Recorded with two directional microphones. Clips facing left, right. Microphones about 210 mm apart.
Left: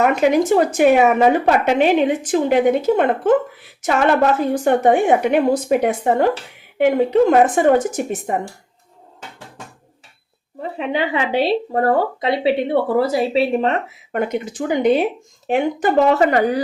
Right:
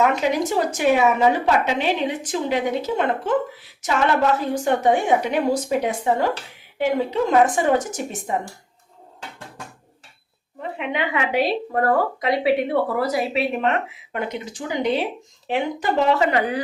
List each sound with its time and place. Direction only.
0.0 s a woman's voice: 50° left (ahead or behind)
4.4 s speech: 55° left (ahead or behind)
10.6 s speech: 35° left (ahead or behind)
14.1 s a woman's voice: 50° left (ahead or behind)